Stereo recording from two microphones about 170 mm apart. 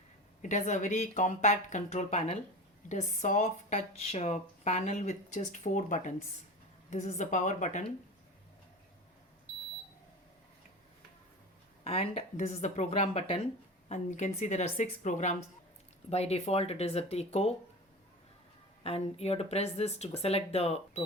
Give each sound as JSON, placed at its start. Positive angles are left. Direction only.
{"t": 0.4, "sound": "speech", "side_deg": 45}
{"t": 11.8, "sound": "speech", "side_deg": 35}
{"t": 18.8, "sound": "speech", "side_deg": 35}